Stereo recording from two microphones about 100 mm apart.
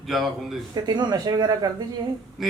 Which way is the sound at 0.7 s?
45° right (ahead or behind).